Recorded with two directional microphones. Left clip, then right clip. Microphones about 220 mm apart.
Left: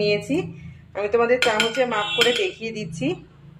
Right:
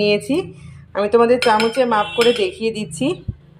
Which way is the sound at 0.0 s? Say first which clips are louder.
Right 4 dB; 40° right (ahead or behind).